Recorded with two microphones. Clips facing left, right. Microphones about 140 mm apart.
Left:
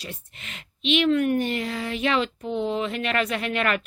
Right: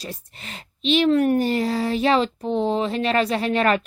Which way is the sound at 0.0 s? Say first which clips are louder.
Right 4 dB; 35° right (ahead or behind).